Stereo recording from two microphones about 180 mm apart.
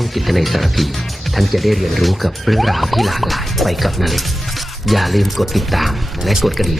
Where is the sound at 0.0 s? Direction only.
Centre (ahead or behind).